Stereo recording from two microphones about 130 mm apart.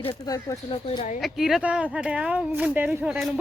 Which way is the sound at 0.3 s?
25° left (ahead or behind).